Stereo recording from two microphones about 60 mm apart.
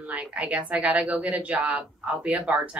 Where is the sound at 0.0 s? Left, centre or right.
Right.